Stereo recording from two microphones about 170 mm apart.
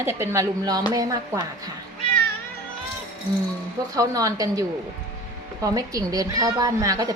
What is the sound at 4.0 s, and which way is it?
A woman's voice, 20° right (ahead or behind).